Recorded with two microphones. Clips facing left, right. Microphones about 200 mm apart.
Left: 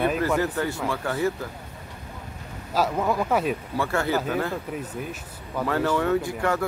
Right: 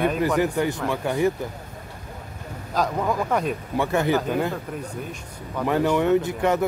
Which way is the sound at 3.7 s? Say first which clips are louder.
Right 5 dB; 20° right (ahead or behind).